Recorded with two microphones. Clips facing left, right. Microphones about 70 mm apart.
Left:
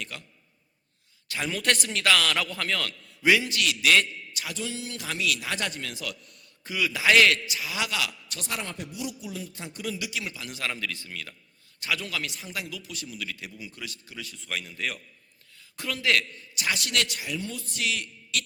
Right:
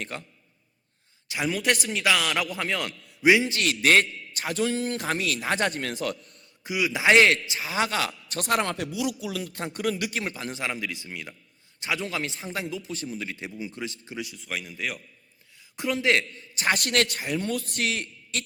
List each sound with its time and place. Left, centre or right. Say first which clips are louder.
0.0 s a man's voice: right 4 dB; right
1.3 s a man's voice: right 2 dB; centre
3.6 s a man's voice: right 2 dB; right
6.7 s a man's voice: right 2 dB; centre; by 8.4 s right
8.4 s speech: right 9 dB; right
10.5 s a man's voice: right 2 dB; centre
14.3 s a man's voice: right 1 dB; centre
15.7 s a man's voice: right 3 dB; right